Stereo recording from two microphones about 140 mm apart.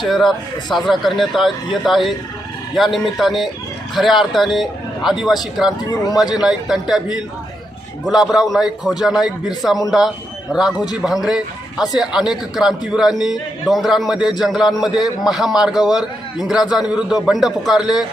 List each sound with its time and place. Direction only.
0.1 s speech: centre (ahead or behind)
8.0 s a man's voice: 5° right (ahead or behind)
15.7 s a man's voice: 30° left (ahead or behind)
16.0 s speech: 5° right (ahead or behind)